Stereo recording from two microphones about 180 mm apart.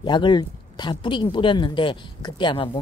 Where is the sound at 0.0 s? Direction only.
25° left (ahead or behind).